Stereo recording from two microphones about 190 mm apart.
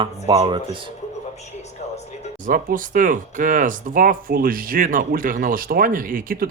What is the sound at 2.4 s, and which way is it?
Speech, 45° right (ahead or behind).